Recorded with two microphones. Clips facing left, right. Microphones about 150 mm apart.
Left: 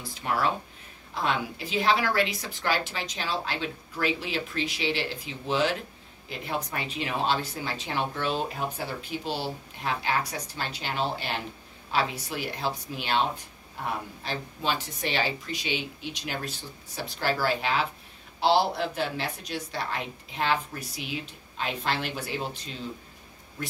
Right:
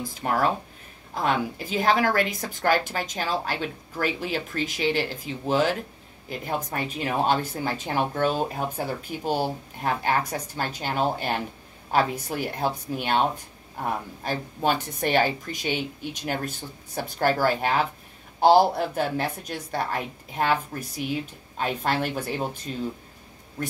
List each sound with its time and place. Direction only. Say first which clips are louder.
0.0 s speech: right 3 dB; 45° right (ahead or behind)
14.2 s speech: right 7 dB; 50° right (ahead or behind)